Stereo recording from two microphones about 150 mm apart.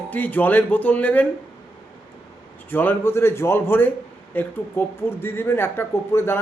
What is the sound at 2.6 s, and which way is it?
Speech, 15° left (ahead or behind).